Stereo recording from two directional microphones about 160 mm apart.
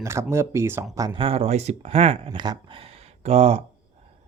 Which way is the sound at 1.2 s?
35° right (ahead or behind).